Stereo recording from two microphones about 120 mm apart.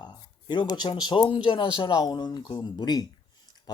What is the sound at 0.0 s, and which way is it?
Speech, 35° left (ahead or behind).